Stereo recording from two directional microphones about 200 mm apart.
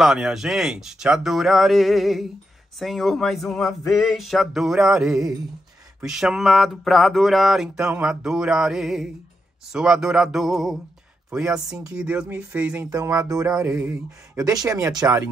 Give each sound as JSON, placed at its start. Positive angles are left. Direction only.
{"t": 0.0, "sound": "speech", "side_deg": 0}